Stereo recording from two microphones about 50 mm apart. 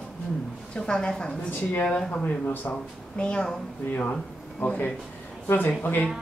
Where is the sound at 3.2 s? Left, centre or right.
Centre.